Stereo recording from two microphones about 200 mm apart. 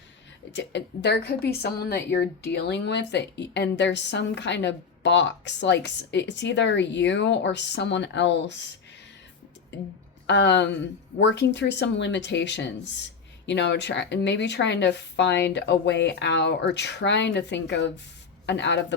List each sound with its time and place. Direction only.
0.5 s a woman's voice: 60° left (ahead or behind)
10.2 s a woman's voice: 60° left (ahead or behind)